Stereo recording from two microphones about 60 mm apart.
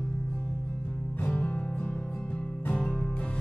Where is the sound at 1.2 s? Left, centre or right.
Left.